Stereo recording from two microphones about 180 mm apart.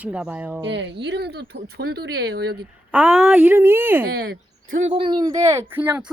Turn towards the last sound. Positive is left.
turn(degrees=-10)  # may be behind; listen again after turning